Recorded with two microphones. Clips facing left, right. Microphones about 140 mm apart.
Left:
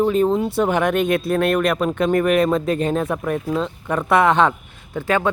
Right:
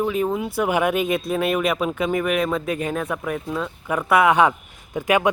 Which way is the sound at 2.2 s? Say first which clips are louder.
Left 5 dB; 40° left (ahead or behind).